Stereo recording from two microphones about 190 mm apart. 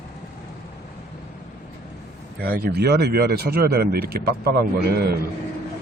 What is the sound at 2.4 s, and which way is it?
Speech, 55° right (ahead or behind).